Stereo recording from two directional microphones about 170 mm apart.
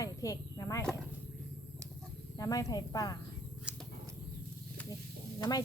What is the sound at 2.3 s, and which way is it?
Speech, 20° left (ahead or behind).